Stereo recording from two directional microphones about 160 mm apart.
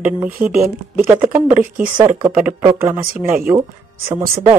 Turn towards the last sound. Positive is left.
turn(degrees=-15)  # may be behind; listen again after turning